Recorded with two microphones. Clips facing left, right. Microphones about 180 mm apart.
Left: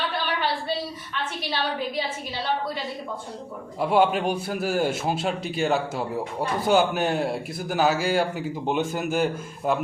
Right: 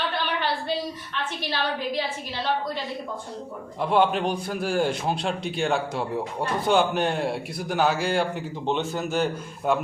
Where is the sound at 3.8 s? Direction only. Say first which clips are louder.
Left 1 dB; 5° left (ahead or behind).